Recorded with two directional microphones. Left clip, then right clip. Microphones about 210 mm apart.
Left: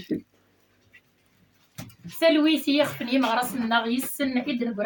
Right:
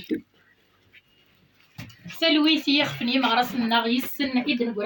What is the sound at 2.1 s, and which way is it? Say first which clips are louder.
A woman's voice: even; 35° left (ahead or behind).